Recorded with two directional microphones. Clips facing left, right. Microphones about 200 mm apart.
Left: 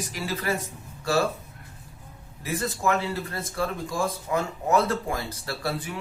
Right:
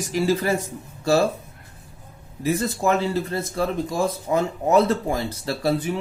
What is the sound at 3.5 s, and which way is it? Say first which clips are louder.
Speech: right 4 dB; 20° right (ahead or behind).